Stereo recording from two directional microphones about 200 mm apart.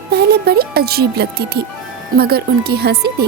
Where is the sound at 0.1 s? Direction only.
55° right (ahead or behind).